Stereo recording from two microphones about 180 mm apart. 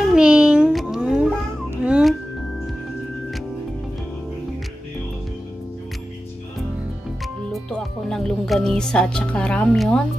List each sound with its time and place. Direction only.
0.1 s a sound: 5° right (ahead or behind)
1.8 s music: 5° right (ahead or behind)
7.5 s speech: centre (ahead or behind)